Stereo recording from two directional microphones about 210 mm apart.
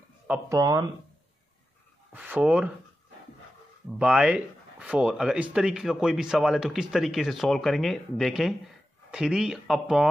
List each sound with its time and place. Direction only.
0.3 s speech: 15° right (ahead or behind)
2.1 s speech: 5° right (ahead or behind)
4.0 s speech: 5° right (ahead or behind)